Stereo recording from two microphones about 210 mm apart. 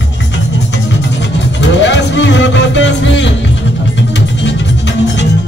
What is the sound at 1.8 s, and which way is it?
Music, 60° left (ahead or behind).